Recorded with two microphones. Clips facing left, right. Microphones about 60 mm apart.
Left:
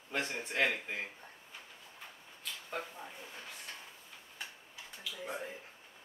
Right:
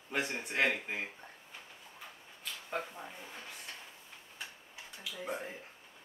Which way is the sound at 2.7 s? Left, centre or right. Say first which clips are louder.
Right 3 dB; centre.